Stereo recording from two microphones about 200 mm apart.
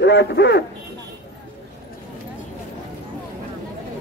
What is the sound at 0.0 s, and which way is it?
Speech, 60° left (ahead or behind).